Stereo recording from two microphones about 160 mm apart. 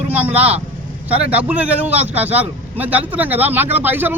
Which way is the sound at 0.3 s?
10° right (ahead or behind).